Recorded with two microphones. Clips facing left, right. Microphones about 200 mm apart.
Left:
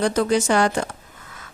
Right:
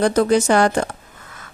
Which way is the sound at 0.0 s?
50° right (ahead or behind).